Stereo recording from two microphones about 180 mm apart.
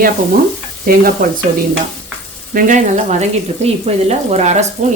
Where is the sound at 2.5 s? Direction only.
40° right (ahead or behind).